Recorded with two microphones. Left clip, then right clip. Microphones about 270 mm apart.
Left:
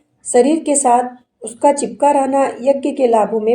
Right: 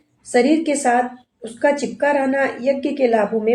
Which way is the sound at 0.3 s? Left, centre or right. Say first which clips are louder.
Left 3 dB; left.